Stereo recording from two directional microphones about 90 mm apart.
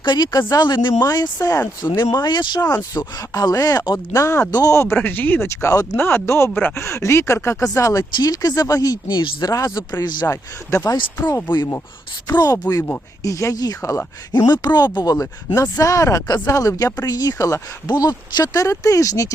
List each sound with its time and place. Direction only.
0.0 s speech: 55° left (ahead or behind)
1.0 s speech: 45° left (ahead or behind)
2.0 s speech: 50° left (ahead or behind)
2.6 s speech: 45° left (ahead or behind)
4.9 s speech: 20° left (ahead or behind)
5.5 s speech: 35° left (ahead or behind)
8.1 s speech: 45° left (ahead or behind)
10.0 s speech: 55° left (ahead or behind)
10.2 s speech: 30° left (ahead or behind)
12.4 s speech: 45° left (ahead or behind)
14.3 s speech: 50° left (ahead or behind); by 17.6 s 35° left (ahead or behind)
17.8 s speech: 45° left (ahead or behind)